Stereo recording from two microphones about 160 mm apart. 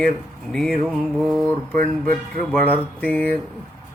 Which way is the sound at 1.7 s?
60° right (ahead or behind).